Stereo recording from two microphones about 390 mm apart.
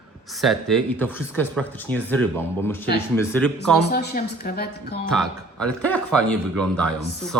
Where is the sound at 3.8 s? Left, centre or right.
Left.